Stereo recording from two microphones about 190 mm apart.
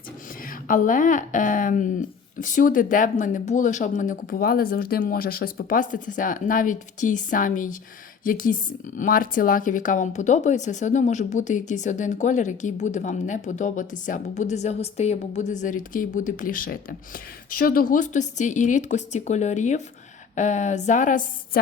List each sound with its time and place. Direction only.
0.4 s speech: 45° left (ahead or behind)